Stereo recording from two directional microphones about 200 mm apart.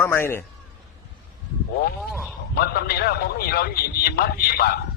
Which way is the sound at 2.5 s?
50° left (ahead or behind).